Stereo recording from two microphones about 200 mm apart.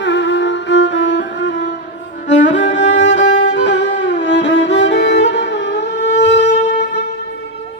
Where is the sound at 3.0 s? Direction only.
60° left (ahead or behind).